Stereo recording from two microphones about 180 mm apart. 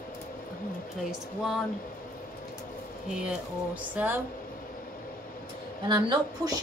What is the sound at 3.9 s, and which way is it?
Speech, 10° right (ahead or behind).